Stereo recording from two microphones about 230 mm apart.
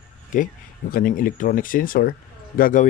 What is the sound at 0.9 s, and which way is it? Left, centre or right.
Speech, left.